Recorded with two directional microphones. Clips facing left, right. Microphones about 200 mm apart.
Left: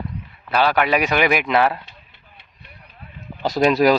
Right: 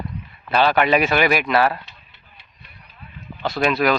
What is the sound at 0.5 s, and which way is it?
Speech, 10° left (ahead or behind).